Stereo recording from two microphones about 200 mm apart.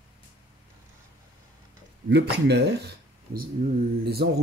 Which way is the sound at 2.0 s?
55° right (ahead or behind).